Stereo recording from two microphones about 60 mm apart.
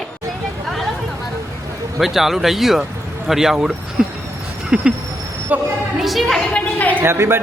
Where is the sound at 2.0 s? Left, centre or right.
Centre.